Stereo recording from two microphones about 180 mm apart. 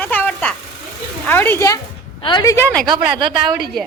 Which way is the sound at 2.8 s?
25° right (ahead or behind).